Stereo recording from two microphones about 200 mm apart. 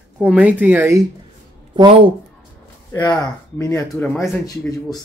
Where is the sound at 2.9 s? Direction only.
10° left (ahead or behind).